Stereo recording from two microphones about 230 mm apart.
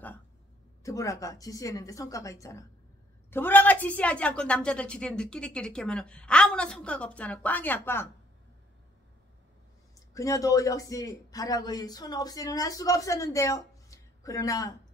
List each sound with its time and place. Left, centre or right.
0.8 s a man's voice: centre
9.9 s a man's voice: centre